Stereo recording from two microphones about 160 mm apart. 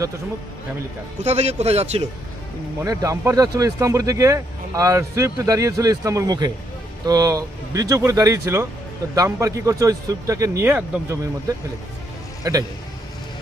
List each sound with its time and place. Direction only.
1.2 s a man's voice: 45° right (ahead or behind)
2.8 s speech: 20° right (ahead or behind)
12.4 s speech: 20° right (ahead or behind)